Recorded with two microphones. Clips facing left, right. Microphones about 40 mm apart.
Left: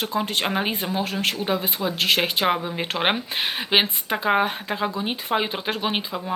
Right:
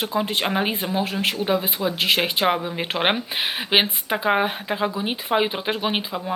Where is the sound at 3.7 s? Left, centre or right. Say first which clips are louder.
Right 1 dB; centre.